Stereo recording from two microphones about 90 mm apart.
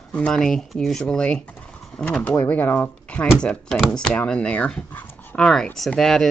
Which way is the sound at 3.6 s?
5° right (ahead or behind).